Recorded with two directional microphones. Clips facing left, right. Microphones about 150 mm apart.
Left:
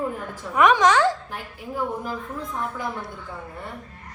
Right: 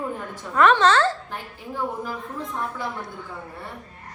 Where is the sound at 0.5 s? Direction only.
10° left (ahead or behind).